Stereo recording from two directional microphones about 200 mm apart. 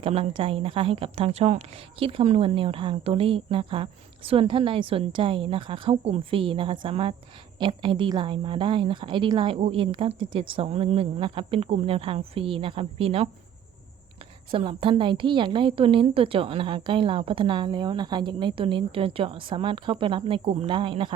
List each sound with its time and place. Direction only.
0.0 s a woman's voice: 25° right (ahead or behind)
14.5 s a woman's voice: 25° right (ahead or behind)